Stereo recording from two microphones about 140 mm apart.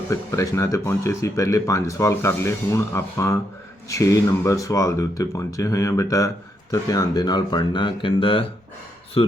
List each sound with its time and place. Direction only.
0.1 s speech: 20° left (ahead or behind); by 9.3 s 40° left (ahead or behind)